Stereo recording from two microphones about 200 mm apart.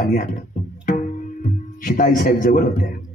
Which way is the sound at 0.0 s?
45° left (ahead or behind).